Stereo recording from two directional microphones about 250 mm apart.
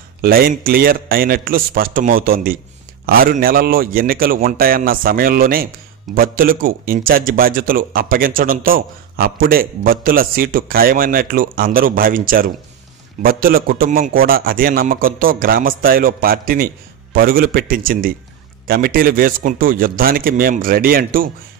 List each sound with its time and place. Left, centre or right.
0.2 s a man's voice: right